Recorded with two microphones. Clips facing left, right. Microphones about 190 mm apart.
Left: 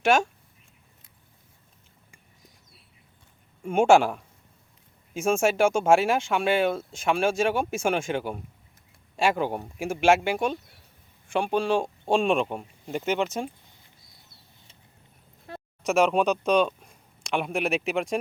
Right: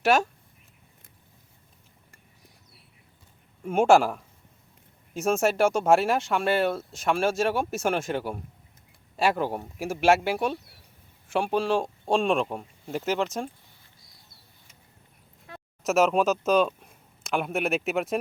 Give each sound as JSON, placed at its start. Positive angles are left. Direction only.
{"t": 0.0, "sound": "speech", "side_deg": -5}
{"t": 3.6, "sound": "speech", "side_deg": 0}
{"t": 15.5, "sound": "a sound", "side_deg": 35}
{"t": 15.8, "sound": "speech", "side_deg": 0}